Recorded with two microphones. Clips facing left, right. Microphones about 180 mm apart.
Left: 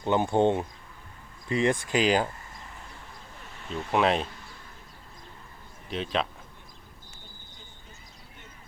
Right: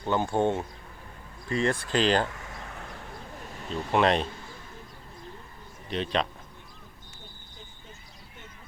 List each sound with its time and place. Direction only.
0.0 s speech: 20° left (ahead or behind)
2.3 s a sound: 75° right (ahead or behind)
3.7 s speech: centre (ahead or behind)
5.9 s speech: centre (ahead or behind)